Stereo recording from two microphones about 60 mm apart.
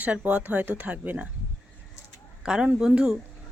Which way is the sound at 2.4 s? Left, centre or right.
Centre.